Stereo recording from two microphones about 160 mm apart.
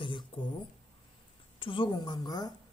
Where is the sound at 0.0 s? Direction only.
30° left (ahead or behind).